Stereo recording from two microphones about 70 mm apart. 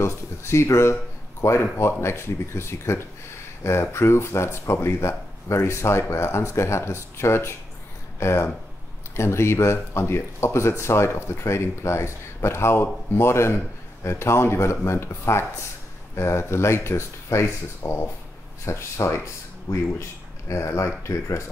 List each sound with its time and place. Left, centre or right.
0.0 s speech: left